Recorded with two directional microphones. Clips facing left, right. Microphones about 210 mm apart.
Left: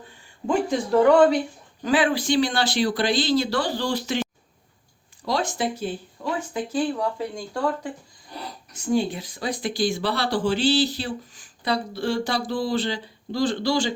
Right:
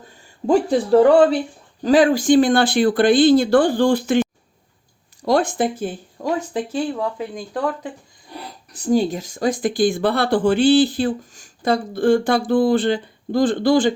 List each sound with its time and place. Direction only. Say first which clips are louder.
0.4 s speech: right 6 dB; 35° right (ahead or behind); by 4.2 s 55° right (ahead or behind)
5.2 s speech: right 7 dB; 55° right (ahead or behind)
8.7 s speech: right 5 dB; 35° right (ahead or behind); by 13.9 s 55° right (ahead or behind)